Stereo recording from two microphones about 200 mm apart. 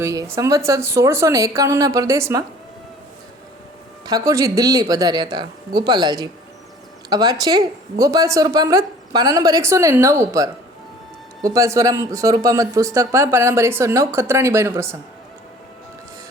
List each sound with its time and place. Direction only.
0.0 s speech: 15° right (ahead or behind)
4.0 s speech: 15° right (ahead or behind)